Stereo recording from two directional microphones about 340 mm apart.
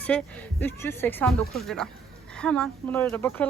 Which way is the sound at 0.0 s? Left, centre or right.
Centre.